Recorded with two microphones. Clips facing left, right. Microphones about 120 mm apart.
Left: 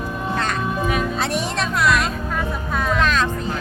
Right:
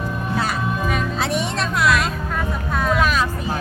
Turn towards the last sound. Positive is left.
turn(degrees=-10)  # may be behind; listen again after turning